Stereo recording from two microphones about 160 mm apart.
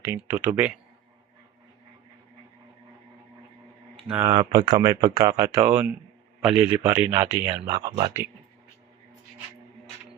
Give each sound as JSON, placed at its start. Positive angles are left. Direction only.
{"t": 0.1, "sound": "speech", "side_deg": -10}
{"t": 4.1, "sound": "speech", "side_deg": -15}
{"t": 4.4, "sound": "speech", "side_deg": -25}
{"t": 5.4, "sound": "speech", "side_deg": -15}
{"t": 7.7, "sound": "speech", "side_deg": -25}